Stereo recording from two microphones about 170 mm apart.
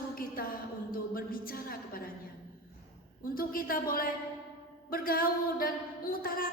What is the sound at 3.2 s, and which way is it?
Speech, 55° left (ahead or behind).